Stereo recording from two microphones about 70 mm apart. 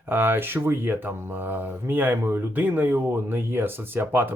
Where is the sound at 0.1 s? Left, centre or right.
Right.